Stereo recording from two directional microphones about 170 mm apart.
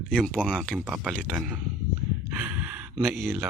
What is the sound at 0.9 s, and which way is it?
Speech, 5° right (ahead or behind).